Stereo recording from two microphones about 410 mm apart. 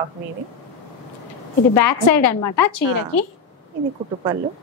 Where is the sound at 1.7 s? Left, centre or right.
Left.